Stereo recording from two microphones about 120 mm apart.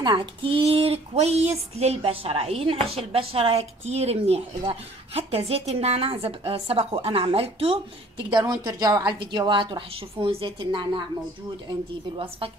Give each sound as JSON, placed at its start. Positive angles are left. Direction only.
{"t": 0.0, "sound": "speech", "side_deg": -40}
{"t": 8.3, "sound": "a woman's voice", "side_deg": -40}